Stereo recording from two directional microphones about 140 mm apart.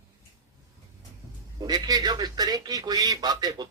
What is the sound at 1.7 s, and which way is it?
Speech, 30° right (ahead or behind).